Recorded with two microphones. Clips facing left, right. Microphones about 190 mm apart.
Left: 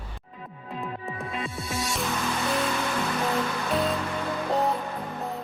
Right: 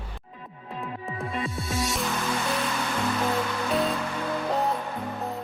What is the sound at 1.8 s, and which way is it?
Music, centre (ahead or behind).